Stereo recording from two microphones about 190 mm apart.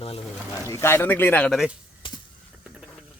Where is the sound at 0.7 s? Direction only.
15° left (ahead or behind).